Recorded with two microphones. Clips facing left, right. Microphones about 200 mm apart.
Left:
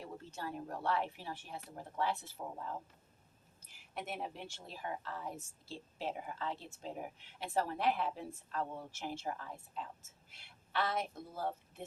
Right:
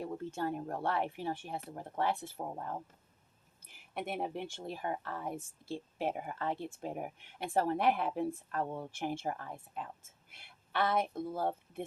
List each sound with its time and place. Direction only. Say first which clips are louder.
0.0 s a woman's voice: right 8 dB; 55° right (ahead or behind)